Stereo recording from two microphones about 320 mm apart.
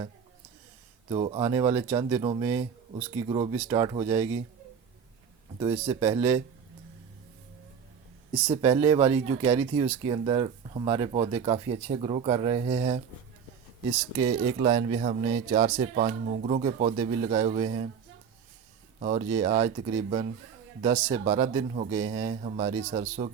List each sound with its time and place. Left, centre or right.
1.1 s speech: centre
5.5 s speech: centre
8.4 s speech: centre
14.3 s speech: centre
18.9 s speech: right